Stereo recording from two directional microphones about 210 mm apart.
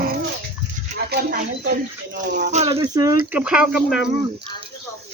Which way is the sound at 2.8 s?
15° right (ahead or behind).